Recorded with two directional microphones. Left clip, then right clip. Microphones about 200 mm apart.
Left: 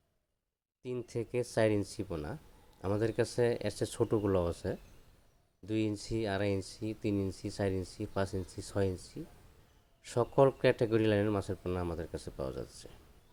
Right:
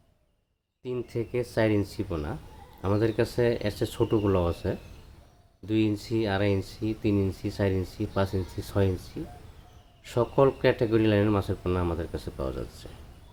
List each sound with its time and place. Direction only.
0.9 s speech: 40° left (ahead or behind)